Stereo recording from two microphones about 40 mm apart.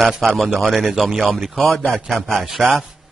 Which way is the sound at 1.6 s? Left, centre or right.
Centre.